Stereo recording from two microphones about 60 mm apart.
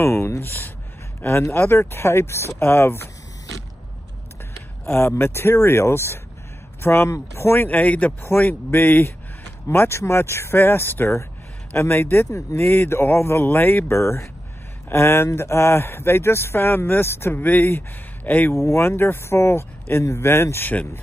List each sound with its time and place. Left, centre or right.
0.0 s speech: left
4.8 s speech: left
8.3 s speech: left
9.7 s speech: left
12.3 s speech: left
12.5 s speech: left
13.9 s speech: left
18.5 s speech: left